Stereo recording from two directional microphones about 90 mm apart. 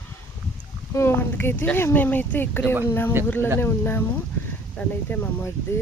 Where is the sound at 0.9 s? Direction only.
25° left (ahead or behind).